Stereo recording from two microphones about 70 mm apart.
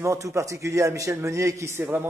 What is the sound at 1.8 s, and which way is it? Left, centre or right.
Speech, right.